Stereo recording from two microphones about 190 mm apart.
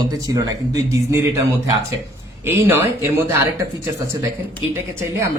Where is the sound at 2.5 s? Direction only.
10° right (ahead or behind).